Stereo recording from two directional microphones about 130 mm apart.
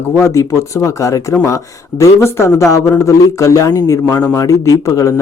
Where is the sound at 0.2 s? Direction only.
20° left (ahead or behind).